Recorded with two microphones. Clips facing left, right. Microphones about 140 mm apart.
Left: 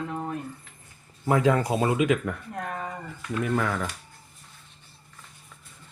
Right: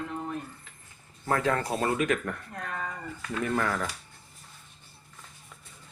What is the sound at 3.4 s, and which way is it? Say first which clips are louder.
Speech: left 1 dB; 5° left (ahead or behind).